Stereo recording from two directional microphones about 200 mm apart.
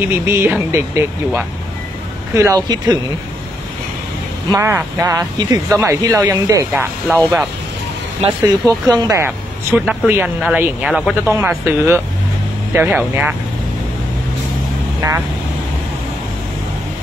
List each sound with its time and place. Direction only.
0.0 s speech: 10° right (ahead or behind)
4.5 s speech: 10° right (ahead or behind)
8.6 s speech: 20° right (ahead or behind)
15.0 s speech: 15° right (ahead or behind)